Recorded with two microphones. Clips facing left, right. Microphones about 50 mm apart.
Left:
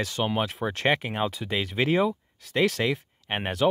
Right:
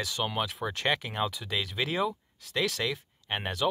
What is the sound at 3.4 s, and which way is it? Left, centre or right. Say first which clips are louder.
Speech: left 6 dB; left.